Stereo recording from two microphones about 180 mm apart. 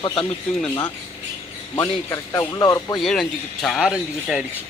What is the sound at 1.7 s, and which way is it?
A man's voice, 25° left (ahead or behind).